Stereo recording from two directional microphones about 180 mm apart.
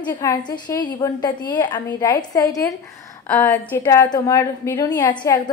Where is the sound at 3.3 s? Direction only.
10° left (ahead or behind).